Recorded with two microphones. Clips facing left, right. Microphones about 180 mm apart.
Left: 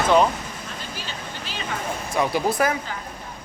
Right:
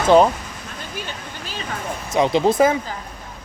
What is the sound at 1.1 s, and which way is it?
Vehicle, 45° right (ahead or behind).